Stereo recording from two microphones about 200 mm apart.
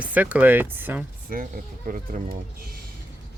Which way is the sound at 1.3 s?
45° right (ahead or behind).